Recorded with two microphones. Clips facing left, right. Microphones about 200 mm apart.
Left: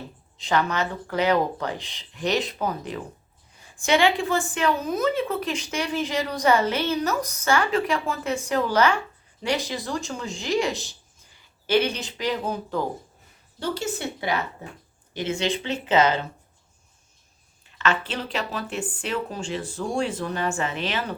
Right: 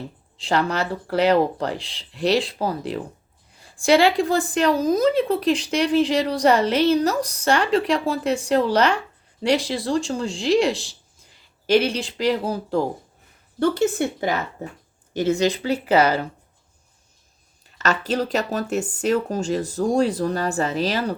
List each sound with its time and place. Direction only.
0.3 s a woman's voice: 30° right (ahead or behind)
13.6 s a woman's voice: 55° right (ahead or behind)
16.0 s speech: 20° left (ahead or behind)
17.7 s a woman's voice: 40° right (ahead or behind)